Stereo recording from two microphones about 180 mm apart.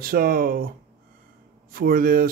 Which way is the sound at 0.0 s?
55° right (ahead or behind).